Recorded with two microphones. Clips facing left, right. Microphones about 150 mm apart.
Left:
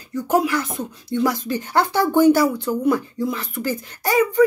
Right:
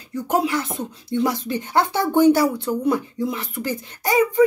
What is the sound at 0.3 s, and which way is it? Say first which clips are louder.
Speech: left 2 dB; 25° right (ahead or behind).